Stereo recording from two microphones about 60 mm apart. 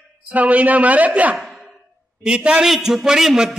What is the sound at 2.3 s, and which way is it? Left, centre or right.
Speech, centre.